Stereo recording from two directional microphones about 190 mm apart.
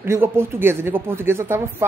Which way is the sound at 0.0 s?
15° right (ahead or behind).